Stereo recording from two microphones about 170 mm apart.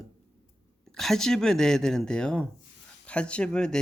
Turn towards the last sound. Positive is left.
turn(degrees=5)  # may be behind; listen again after turning